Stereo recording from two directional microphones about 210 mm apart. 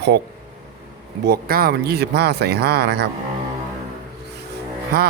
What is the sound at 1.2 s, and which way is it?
A man's voice, 45° right (ahead or behind).